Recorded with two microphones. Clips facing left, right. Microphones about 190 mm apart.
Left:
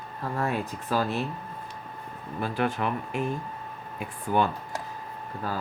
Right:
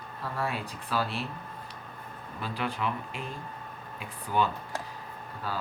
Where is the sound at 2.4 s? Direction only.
50° left (ahead or behind).